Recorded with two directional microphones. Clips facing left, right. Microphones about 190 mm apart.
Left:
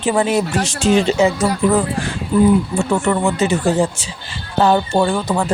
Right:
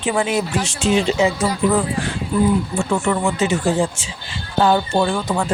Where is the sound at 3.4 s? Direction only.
40° left (ahead or behind).